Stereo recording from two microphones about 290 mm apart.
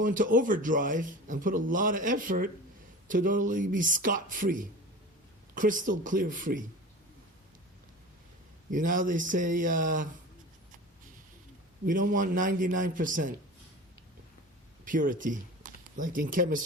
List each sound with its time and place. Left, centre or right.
0.0 s a man's voice: right
5.5 s a man's voice: right
8.7 s a man's voice: right
11.9 s a man's voice: right
14.8 s speech: right